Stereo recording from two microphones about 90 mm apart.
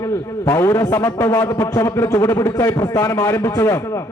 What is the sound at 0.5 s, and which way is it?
A man's voice, 35° left (ahead or behind).